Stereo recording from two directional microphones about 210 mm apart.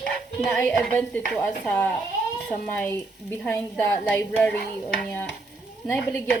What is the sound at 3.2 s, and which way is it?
A woman's voice, 5° left (ahead or behind).